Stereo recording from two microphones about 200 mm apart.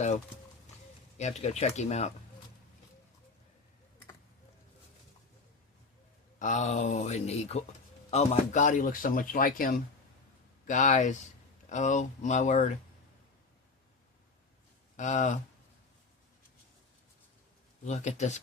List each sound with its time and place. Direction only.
1.4 s a man's voice: 35° left (ahead or behind)
6.4 s a man's voice: 40° left (ahead or behind)
14.9 s speech: 40° left (ahead or behind)
17.8 s a man's voice: 35° left (ahead or behind)